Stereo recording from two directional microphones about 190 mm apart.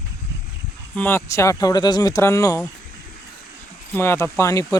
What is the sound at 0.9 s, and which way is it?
Speech, 10° left (ahead or behind).